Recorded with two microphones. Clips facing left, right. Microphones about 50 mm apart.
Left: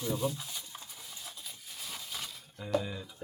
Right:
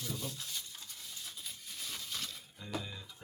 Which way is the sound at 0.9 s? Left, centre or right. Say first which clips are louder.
Left 1 dB; centre.